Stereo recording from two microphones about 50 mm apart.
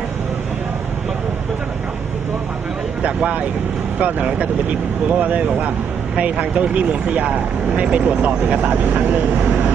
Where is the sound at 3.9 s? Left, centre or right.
Right.